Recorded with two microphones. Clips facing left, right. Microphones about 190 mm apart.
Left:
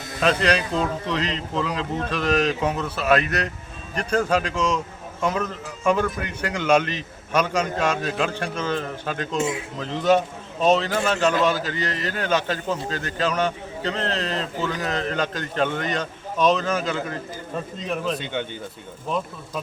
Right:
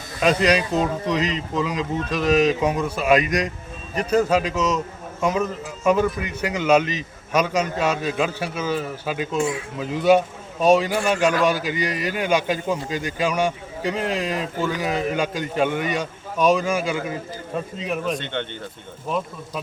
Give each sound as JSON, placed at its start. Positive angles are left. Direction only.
{"t": 0.2, "sound": "speech", "side_deg": -10}
{"t": 9.4, "sound": "speech", "side_deg": 25}
{"t": 9.7, "sound": "speech", "side_deg": -10}
{"t": 18.2, "sound": "speech", "side_deg": 10}